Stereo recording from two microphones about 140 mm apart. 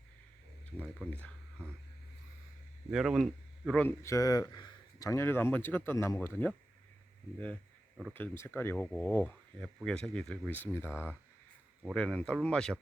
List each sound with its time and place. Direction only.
1.0 s speech: 5° left (ahead or behind)
2.9 s speech: 5° right (ahead or behind)
3.8 s speech: 20° left (ahead or behind)
11.9 s speech: 5° left (ahead or behind)